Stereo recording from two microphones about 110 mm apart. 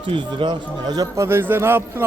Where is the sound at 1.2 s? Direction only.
20° right (ahead or behind).